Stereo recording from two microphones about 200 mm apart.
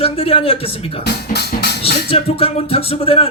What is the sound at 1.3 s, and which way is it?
Music, 55° left (ahead or behind).